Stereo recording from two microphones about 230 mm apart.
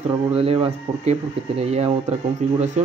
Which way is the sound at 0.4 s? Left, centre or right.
Right.